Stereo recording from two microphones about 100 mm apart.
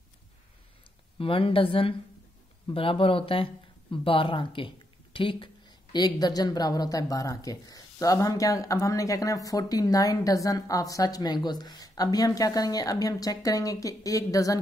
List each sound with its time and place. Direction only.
1.1 s a woman's voice: 65° left (ahead or behind)
5.9 s speech: 45° left (ahead or behind)